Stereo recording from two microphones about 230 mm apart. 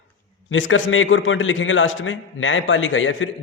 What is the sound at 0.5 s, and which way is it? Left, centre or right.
A man's voice, left.